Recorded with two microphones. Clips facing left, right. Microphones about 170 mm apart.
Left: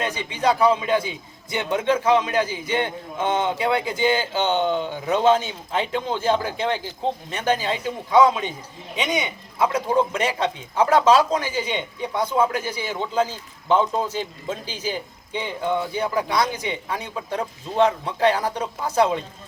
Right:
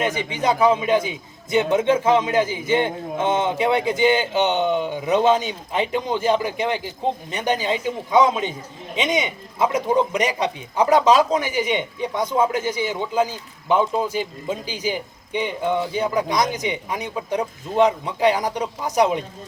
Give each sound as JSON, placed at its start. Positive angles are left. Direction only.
{"t": 0.0, "sound": "a man's voice", "side_deg": -20}